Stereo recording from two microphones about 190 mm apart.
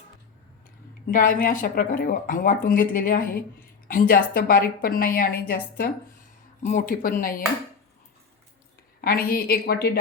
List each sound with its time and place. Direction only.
1.1 s a woman's voice: 45° left (ahead or behind)
6.6 s a woman's voice: 40° left (ahead or behind)
9.0 s a woman's voice: 50° left (ahead or behind)